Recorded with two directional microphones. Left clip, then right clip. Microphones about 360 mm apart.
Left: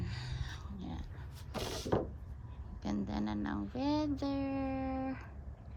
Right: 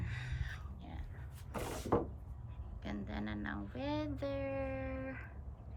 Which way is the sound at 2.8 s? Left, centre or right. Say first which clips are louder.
Left 5 dB; centre.